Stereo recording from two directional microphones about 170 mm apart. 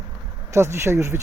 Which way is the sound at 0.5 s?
15° right (ahead or behind).